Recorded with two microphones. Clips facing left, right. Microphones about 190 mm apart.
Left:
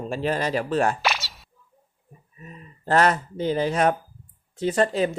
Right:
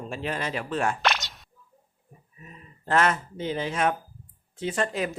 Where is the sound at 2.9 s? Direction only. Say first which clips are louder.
Left 3 dB; 35° left (ahead or behind).